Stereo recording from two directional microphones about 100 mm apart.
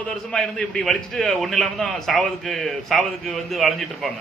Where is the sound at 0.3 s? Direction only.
5° left (ahead or behind).